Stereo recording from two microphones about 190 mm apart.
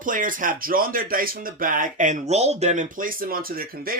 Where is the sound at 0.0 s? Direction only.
45° right (ahead or behind).